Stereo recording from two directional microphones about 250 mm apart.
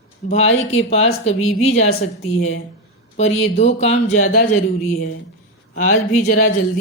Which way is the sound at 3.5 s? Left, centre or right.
Left.